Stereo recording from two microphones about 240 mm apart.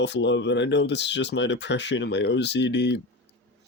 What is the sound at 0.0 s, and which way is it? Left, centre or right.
Speech, left.